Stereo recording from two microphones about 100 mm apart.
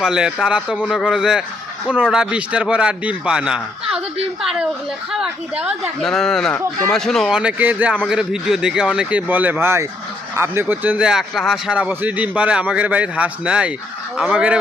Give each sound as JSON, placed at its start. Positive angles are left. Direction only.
{"t": 0.0, "sound": "speech", "side_deg": -5}
{"t": 5.1, "sound": "speech", "side_deg": -10}
{"t": 6.0, "sound": "speech", "side_deg": 5}
{"t": 7.3, "sound": "speech", "side_deg": -15}